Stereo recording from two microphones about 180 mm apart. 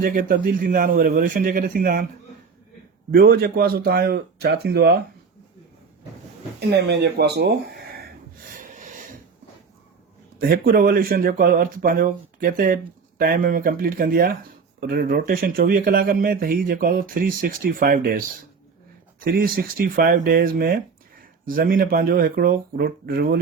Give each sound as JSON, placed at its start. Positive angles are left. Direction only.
{"t": 0.0, "sound": "speech", "side_deg": -50}
{"t": 3.1, "sound": "speech", "side_deg": -55}
{"t": 6.7, "sound": "speech", "side_deg": -65}
{"t": 8.5, "sound": "snort", "side_deg": -45}
{"t": 10.4, "sound": "speech", "side_deg": -55}